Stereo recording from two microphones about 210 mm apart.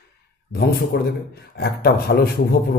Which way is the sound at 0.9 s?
50° left (ahead or behind).